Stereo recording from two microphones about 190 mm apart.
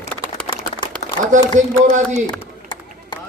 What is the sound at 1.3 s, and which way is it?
Speech, 40° right (ahead or behind).